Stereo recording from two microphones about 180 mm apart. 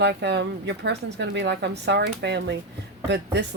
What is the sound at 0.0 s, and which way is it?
Speech, 70° right (ahead or behind).